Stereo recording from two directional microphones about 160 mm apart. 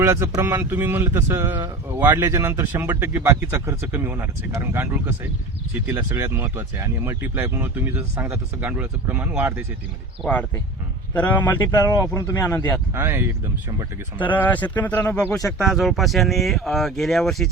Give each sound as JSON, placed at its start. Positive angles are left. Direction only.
{"t": 0.0, "sound": "speech", "side_deg": -20}
{"t": 11.1, "sound": "speech", "side_deg": 10}
{"t": 12.9, "sound": "speech", "side_deg": -15}
{"t": 14.2, "sound": "speech", "side_deg": 10}